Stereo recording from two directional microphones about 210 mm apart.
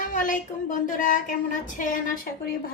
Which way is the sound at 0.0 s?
40° left (ahead or behind).